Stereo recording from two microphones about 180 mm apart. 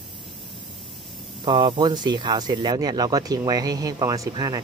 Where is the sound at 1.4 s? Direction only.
25° right (ahead or behind).